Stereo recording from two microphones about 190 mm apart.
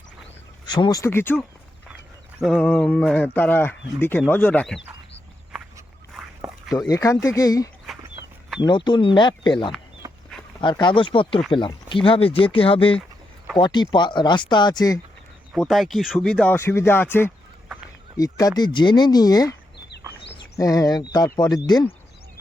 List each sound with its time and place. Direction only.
0.6 s speech: 20° left (ahead or behind)
2.4 s speech: centre (ahead or behind)
2.6 s speech: 10° left (ahead or behind)
6.7 s speech: 20° left (ahead or behind)
15.5 s speech: centre (ahead or behind); by 19.5 s 20° left (ahead or behind)
20.6 s speech: 20° left (ahead or behind)